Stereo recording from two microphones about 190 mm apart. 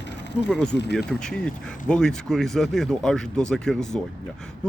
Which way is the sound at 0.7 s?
60° left (ahead or behind).